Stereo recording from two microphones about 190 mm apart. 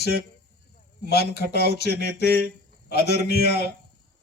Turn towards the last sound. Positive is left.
turn(degrees=60)  # may be behind; listen again after turning